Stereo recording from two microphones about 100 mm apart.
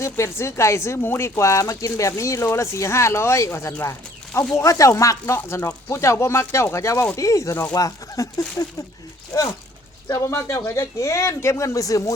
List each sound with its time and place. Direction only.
0.0 s speech: 30° left (ahead or behind)
10.2 s speech: 30° left (ahead or behind)